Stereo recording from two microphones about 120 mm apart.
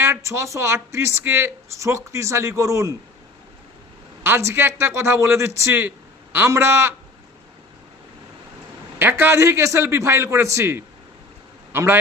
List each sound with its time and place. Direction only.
0.0 s speech: 25° right (ahead or behind)
4.2 s speech: 20° right (ahead or behind)
9.0 s a man's voice: 20° right (ahead or behind)